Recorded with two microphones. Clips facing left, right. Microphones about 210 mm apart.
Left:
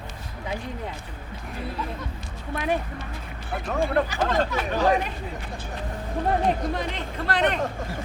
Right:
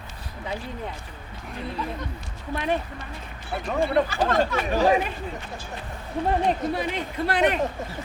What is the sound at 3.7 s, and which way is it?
Speech, 10° right (ahead or behind).